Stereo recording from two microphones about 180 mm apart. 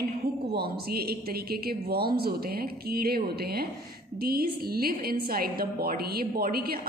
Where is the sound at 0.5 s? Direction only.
60° right (ahead or behind).